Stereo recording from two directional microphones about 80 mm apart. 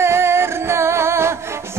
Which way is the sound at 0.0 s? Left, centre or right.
Right.